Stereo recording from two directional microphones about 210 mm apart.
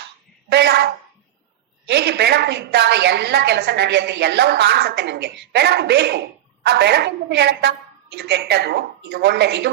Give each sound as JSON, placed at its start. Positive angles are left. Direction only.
{"t": 0.5, "sound": "a woman's voice", "side_deg": -50}
{"t": 1.9, "sound": "a woman's voice", "side_deg": -50}